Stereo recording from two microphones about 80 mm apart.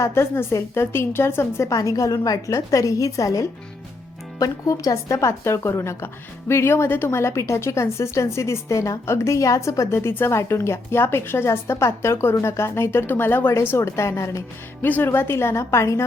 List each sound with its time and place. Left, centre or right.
0.0 s speech: left
1.7 s a woman's voice: left
14.8 s speech: left